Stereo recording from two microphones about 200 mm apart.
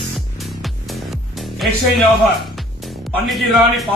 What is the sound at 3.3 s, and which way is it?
Speech, centre (ahead or behind).